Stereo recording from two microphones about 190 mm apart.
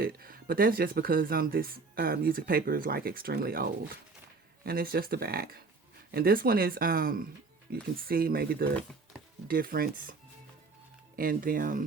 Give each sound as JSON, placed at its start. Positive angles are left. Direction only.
{"t": 0.0, "sound": "speech", "side_deg": -50}
{"t": 11.2, "sound": "speech", "side_deg": -50}